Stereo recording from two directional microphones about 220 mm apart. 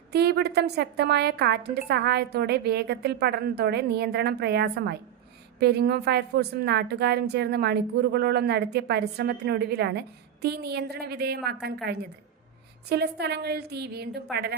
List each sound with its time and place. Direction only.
0.1 s a woman's voice: 50° right (ahead or behind)